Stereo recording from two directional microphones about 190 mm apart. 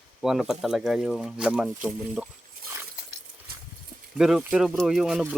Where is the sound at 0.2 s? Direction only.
Centre (ahead or behind).